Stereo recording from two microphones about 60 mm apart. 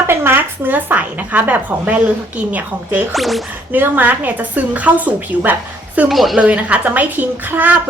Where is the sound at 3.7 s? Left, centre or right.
Right.